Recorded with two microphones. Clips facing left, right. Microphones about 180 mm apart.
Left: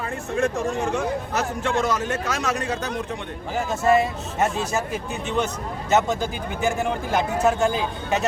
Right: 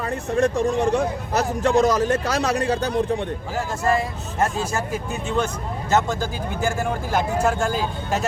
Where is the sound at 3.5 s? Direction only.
Centre (ahead or behind).